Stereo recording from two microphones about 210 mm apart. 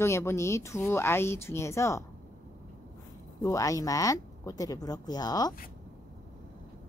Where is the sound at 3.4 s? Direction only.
15° left (ahead or behind).